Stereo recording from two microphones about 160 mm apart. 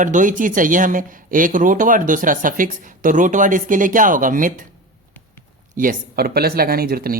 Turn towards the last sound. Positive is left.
turn(degrees=-70)  # may be behind; listen again after turning